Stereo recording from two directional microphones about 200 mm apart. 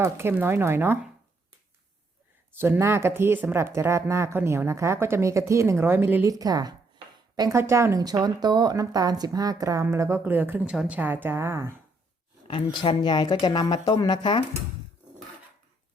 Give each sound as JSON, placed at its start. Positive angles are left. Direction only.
{"t": 0.0, "sound": "speech", "side_deg": -10}
{"t": 2.5, "sound": "speech", "side_deg": -10}
{"t": 12.6, "sound": "speech", "side_deg": 25}